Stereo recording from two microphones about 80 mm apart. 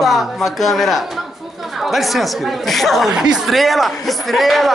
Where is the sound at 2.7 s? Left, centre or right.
Centre.